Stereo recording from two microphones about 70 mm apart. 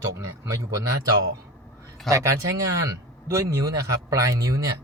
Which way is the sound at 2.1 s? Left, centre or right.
Right.